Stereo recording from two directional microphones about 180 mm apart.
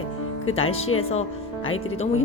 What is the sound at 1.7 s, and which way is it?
Speech, 90° left.